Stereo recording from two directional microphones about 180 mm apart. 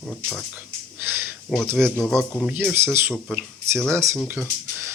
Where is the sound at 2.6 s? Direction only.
10° right (ahead or behind).